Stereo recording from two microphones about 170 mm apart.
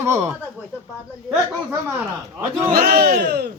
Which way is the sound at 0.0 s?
15° right (ahead or behind).